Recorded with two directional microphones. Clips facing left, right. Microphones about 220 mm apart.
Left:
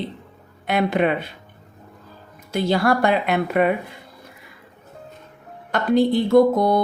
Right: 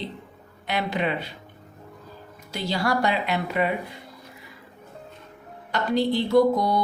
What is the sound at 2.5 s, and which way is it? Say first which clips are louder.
Speech: left 6 dB; 55° left (ahead or behind).